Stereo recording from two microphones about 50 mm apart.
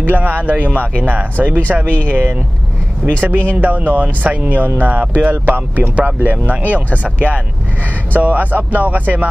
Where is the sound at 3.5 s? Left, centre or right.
Right.